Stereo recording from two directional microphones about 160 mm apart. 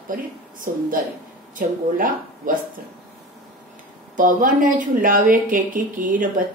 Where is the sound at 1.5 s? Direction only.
55° right (ahead or behind).